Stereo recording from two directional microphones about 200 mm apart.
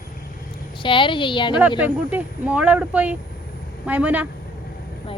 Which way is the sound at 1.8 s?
5° right (ahead or behind).